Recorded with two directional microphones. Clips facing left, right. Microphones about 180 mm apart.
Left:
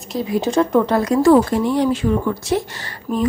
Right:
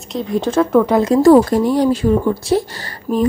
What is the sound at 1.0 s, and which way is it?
Speech, 35° right (ahead or behind).